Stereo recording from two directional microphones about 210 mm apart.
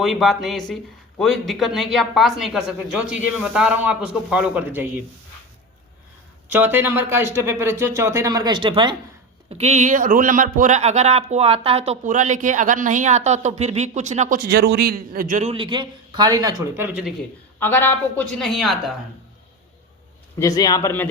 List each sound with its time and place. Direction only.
0.0 s a woman's voice: centre (ahead or behind)
6.5 s speech: 10° right (ahead or behind)
17.6 s a woman's voice: 10° left (ahead or behind)
20.4 s speech: 20° left (ahead or behind)